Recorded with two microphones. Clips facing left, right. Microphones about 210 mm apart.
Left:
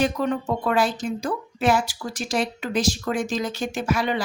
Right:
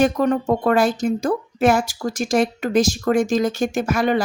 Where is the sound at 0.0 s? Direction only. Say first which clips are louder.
Right 5 dB; 50° right (ahead or behind).